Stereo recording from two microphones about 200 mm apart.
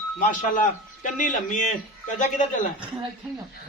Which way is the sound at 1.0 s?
40° left (ahead or behind).